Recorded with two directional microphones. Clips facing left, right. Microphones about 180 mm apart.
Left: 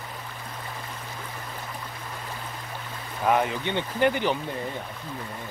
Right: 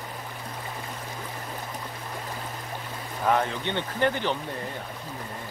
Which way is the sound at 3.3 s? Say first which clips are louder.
Left 1 dB; 10° left (ahead or behind).